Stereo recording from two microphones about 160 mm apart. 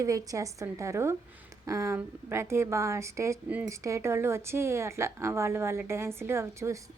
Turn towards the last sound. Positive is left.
turn(degrees=-15)  # may be behind; listen again after turning